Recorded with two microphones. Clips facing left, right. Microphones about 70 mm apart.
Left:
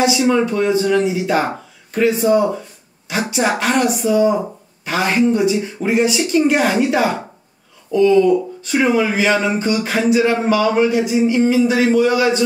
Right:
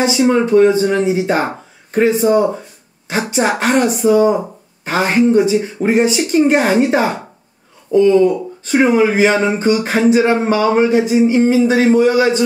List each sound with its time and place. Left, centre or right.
0.0 s a man's voice: right